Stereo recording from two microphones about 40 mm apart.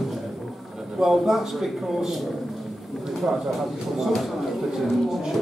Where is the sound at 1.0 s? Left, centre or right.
Centre.